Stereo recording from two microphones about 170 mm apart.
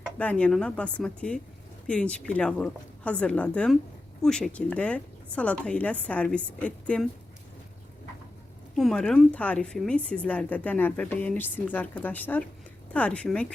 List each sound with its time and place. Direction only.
0.2 s a woman's voice: 10° left (ahead or behind)
8.7 s a woman's voice: centre (ahead or behind)